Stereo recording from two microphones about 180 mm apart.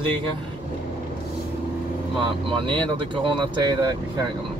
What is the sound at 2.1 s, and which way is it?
Speech, 30° right (ahead or behind).